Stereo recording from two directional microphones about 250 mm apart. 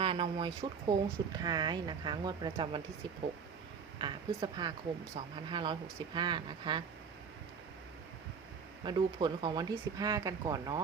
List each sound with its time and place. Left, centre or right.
0.0 s speech: right
3.9 s speech: centre
8.8 s speech: centre